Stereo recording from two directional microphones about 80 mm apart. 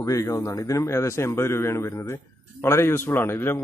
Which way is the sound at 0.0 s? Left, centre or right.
Left.